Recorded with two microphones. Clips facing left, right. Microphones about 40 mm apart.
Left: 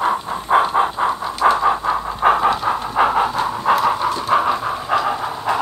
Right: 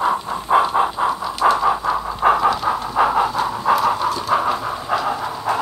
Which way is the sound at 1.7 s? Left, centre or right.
Left.